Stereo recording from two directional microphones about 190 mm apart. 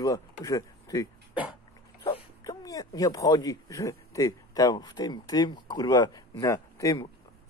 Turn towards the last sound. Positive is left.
turn(degrees=15)  # may be behind; listen again after turning